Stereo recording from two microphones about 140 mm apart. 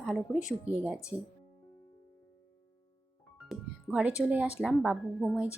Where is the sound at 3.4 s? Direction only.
5° right (ahead or behind).